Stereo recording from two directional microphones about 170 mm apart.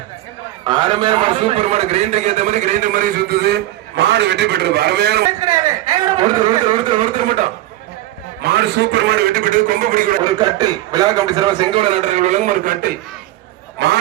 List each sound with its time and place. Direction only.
0.6 s a man's voice: 25° right (ahead or behind); by 5.2 s 75° right (ahead or behind)
5.4 s a man's voice: 20° right (ahead or behind)
8.4 s a man's voice: 70° right (ahead or behind); by 10.2 s 55° right (ahead or behind)
10.2 s a man's voice: 25° right (ahead or behind); by 12.9 s 55° right (ahead or behind)
13.7 s speech: 70° right (ahead or behind)